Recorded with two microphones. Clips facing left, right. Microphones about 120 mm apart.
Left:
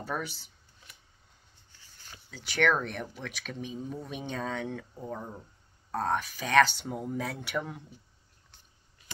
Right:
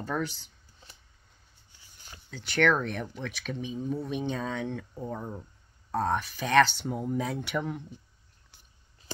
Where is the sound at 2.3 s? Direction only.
5° left (ahead or behind).